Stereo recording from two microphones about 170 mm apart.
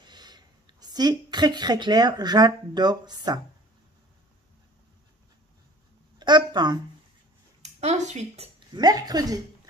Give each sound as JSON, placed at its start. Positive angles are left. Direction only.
{"t": 0.0, "sound": "speech", "side_deg": -25}
{"t": 6.1, "sound": "a sound", "side_deg": -25}
{"t": 7.6, "sound": "speech", "side_deg": -40}
{"t": 8.7, "sound": "speech", "side_deg": -25}